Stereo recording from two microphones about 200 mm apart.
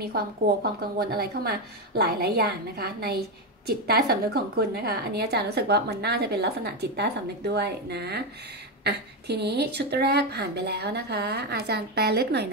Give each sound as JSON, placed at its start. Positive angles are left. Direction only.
{"t": 0.0, "sound": "a woman's voice", "side_deg": -50}